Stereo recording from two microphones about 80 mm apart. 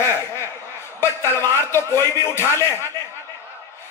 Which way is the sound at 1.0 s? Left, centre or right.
Left.